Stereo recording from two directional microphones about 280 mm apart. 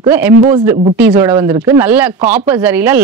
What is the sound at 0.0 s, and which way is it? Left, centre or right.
Speech, centre.